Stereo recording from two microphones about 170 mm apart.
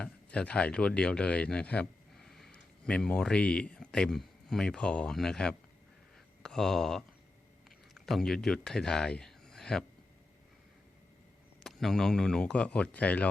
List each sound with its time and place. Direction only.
0.0 s speech: 5° left (ahead or behind)
11.6 s speech: centre (ahead or behind)